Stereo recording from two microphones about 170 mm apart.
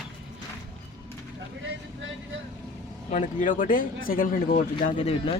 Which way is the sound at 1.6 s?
90° right.